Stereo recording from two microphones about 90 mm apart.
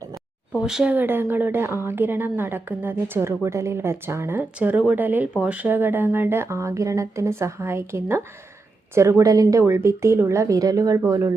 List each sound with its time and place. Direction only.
0.5 s speech: 10° right (ahead or behind)
0.9 s a woman's voice: 25° right (ahead or behind)